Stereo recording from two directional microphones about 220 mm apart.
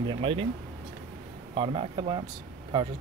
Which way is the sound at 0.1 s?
25° right (ahead or behind).